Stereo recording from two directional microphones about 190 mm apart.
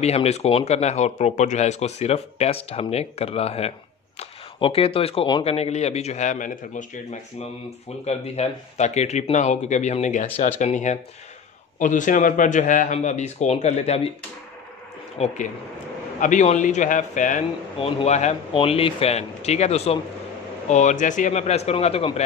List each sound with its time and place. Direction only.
0.0 s speech: 35° left (ahead or behind)
15.1 s speech: 35° left (ahead or behind)
17.7 s speech: 30° left (ahead or behind)